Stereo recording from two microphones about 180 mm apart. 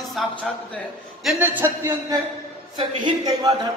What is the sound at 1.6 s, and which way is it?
A man's voice, 15° right (ahead or behind).